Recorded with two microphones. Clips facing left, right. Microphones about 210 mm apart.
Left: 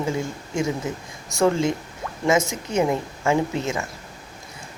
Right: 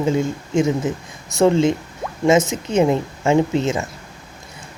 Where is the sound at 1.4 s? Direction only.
20° right (ahead or behind).